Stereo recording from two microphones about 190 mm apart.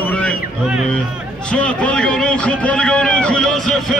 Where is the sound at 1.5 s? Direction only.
5° left (ahead or behind).